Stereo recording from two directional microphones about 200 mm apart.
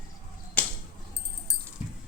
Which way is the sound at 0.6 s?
5° left (ahead or behind).